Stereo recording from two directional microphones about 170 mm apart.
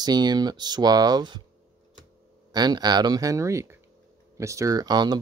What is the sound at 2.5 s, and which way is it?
Speech, 25° right (ahead or behind).